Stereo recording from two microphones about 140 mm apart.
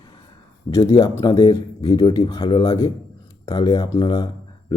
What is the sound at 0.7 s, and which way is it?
Speech, 25° left (ahead or behind).